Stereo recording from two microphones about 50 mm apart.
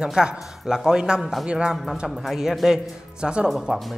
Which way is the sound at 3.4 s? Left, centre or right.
Centre.